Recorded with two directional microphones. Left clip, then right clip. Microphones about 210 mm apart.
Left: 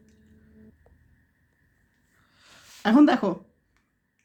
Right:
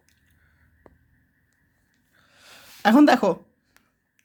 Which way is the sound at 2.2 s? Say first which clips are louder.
Right 4 dB; 30° right (ahead or behind).